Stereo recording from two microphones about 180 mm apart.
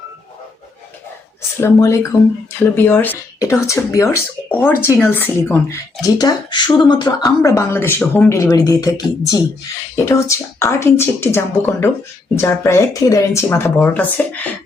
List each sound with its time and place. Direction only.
1.6 s speech: 15° left (ahead or behind)